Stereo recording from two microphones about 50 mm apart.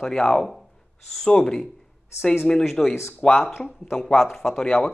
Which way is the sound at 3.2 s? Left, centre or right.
Centre.